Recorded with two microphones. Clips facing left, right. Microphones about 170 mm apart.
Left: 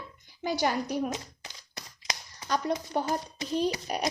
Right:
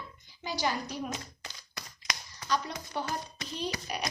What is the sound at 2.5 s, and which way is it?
A woman's voice, 50° left (ahead or behind).